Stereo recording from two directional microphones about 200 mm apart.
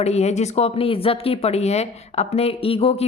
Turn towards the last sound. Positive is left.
turn(degrees=30)  # may be behind; listen again after turning